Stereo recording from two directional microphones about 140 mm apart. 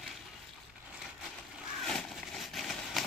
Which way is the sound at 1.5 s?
Centre (ahead or behind).